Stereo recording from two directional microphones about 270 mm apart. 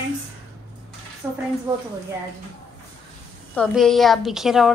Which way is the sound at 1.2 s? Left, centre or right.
Centre.